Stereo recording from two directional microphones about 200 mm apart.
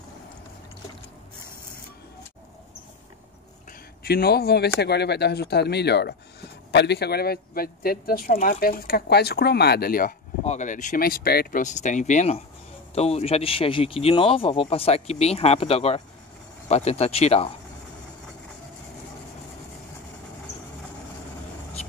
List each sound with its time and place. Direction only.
4.0 s speech: 50° left (ahead or behind)
10.4 s speech: 35° left (ahead or behind)